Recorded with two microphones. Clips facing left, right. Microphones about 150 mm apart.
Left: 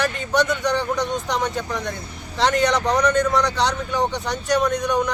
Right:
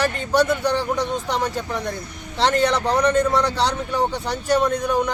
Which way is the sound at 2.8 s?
30° right (ahead or behind).